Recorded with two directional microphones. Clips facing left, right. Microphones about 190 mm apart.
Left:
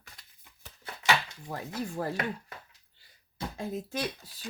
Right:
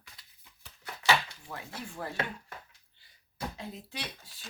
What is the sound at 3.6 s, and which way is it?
Speech, 45° left (ahead or behind).